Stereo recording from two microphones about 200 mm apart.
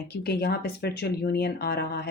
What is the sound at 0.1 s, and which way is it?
Speech, 55° left (ahead or behind).